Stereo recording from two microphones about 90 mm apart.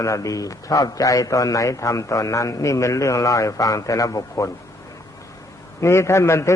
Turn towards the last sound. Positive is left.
turn(degrees=30)  # may be behind; listen again after turning